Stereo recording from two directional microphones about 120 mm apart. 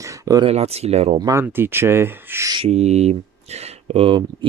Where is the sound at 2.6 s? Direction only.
65° right (ahead or behind); by 4.5 s 45° right (ahead or behind).